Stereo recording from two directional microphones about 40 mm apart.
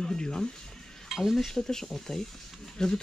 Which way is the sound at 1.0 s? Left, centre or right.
Centre.